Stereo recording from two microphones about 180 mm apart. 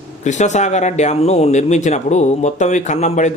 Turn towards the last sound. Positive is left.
turn(degrees=40)  # may be behind; listen again after turning